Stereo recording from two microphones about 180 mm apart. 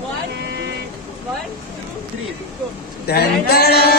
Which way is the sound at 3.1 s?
60° left (ahead or behind).